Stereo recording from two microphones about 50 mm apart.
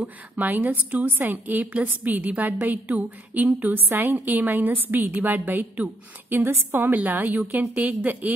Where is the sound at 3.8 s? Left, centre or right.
Right.